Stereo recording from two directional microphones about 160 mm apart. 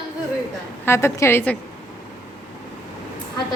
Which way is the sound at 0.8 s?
15° left (ahead or behind).